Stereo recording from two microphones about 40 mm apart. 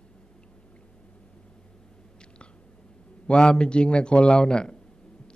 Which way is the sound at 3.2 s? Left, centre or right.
Left.